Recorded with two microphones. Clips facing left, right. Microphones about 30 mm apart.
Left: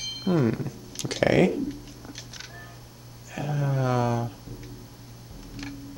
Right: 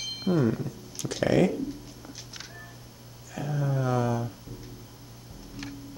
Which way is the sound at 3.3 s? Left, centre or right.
Left.